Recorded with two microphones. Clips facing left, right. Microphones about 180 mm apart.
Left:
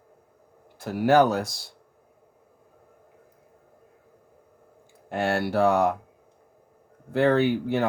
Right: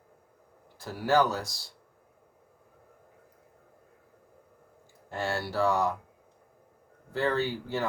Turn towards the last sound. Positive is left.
turn(degrees=60)  # may be behind; listen again after turning